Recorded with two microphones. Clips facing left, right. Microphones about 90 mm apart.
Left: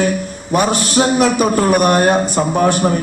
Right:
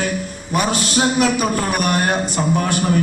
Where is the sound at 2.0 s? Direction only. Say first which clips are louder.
Left 5 dB; 35° left (ahead or behind).